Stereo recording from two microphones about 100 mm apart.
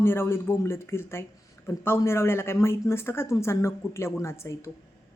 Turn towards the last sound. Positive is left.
turn(degrees=30)  # may be behind; listen again after turning